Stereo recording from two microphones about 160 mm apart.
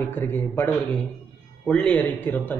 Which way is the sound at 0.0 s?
15° left (ahead or behind).